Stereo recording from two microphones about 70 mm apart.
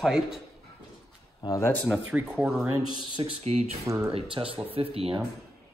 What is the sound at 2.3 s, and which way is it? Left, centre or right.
Speech, right.